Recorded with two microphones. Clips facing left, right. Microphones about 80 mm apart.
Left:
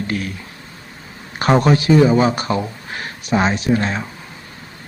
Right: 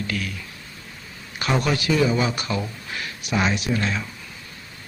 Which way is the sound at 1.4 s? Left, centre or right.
Left.